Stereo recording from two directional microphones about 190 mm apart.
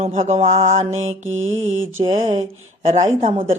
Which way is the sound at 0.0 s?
35° right (ahead or behind).